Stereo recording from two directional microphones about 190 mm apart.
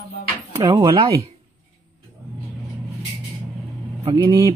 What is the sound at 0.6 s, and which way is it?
Mantra, 20° right (ahead or behind).